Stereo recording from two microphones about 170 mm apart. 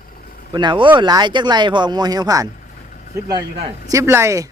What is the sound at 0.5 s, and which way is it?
Speech, 25° right (ahead or behind).